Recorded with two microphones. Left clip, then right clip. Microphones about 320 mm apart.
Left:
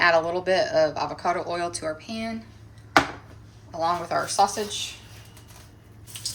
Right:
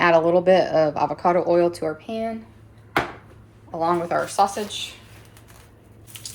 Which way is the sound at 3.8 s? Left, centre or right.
Centre.